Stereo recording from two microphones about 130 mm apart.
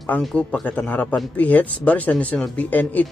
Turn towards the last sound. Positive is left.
turn(degrees=15)  # may be behind; listen again after turning